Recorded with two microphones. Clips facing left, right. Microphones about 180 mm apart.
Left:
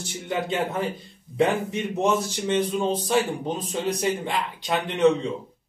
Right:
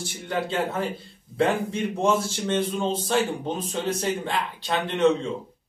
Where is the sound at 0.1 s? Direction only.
15° left (ahead or behind).